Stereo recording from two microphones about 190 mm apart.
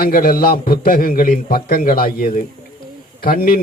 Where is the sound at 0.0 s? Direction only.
50° left (ahead or behind).